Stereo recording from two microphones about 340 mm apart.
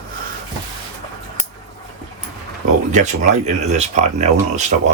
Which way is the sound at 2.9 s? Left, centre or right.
Right.